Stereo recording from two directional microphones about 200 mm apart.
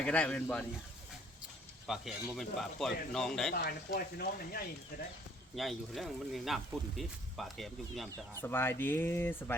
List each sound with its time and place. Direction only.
0.0 s speech: 5° left (ahead or behind)
1.9 s speech: centre (ahead or behind)
3.5 s speech: 50° left (ahead or behind)
5.5 s speech: centre (ahead or behind)
8.4 s speech: 10° left (ahead or behind)